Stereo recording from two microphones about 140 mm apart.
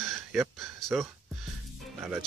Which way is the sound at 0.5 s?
Centre (ahead or behind).